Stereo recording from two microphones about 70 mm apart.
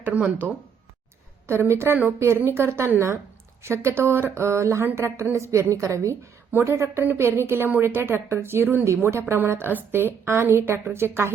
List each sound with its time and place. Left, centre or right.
0.0 s speech: right
1.5 s a woman's voice: right
7.0 s a woman's voice: right